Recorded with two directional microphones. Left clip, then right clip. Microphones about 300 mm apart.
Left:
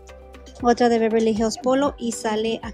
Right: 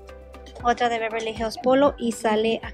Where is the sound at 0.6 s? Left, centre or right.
Centre.